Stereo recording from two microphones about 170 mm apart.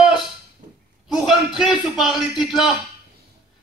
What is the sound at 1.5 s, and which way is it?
Speech, centre (ahead or behind).